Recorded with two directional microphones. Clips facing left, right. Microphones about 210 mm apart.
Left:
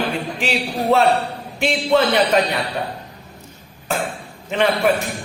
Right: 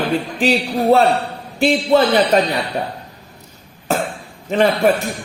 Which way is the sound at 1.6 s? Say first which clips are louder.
Right 3 dB; 35° right (ahead or behind).